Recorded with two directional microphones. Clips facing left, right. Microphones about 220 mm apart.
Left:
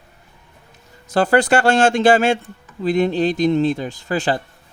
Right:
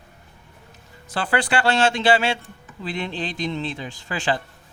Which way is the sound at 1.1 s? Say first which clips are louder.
Left 8 dB; 40° left (ahead or behind).